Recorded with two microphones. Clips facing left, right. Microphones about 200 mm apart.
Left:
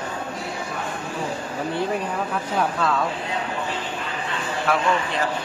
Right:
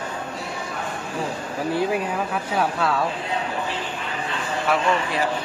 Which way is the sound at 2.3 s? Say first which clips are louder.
Even; 5° right (ahead or behind).